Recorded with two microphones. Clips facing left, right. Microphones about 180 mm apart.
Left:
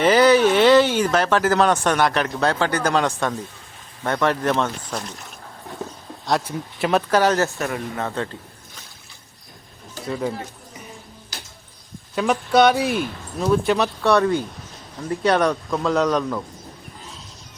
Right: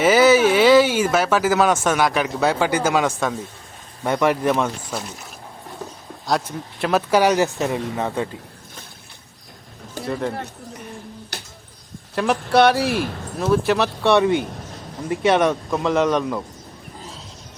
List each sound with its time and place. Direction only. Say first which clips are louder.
0.0 s speech: right 1 dB; 5° right (ahead or behind)
6.2 s speech: even; centre (ahead or behind)
7.1 s speech: right 4 dB; 10° right (ahead or behind)
10.1 s speech: even; 5° left (ahead or behind)
11.3 s a sound: right 1 dB; 60° right (ahead or behind)
12.1 s speech: even; centre (ahead or behind)
14.1 s speech: right 2 dB; 20° right (ahead or behind)
15.4 s speech: right 1 dB; 5° right (ahead or behind)